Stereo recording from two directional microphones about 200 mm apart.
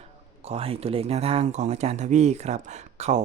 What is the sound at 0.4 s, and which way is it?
Speech, 30° right (ahead or behind).